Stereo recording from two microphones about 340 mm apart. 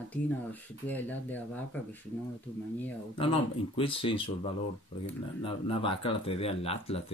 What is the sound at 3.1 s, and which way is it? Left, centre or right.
Speech, centre.